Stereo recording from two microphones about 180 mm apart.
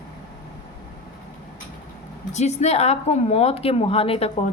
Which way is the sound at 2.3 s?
40° left (ahead or behind).